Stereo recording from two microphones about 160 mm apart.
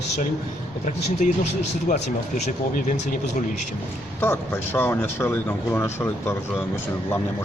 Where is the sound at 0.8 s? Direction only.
50° left (ahead or behind).